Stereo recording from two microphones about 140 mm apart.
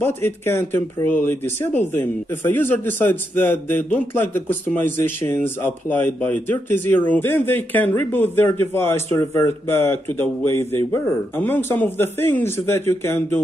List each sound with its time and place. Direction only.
0.0 s speech: 15° left (ahead or behind)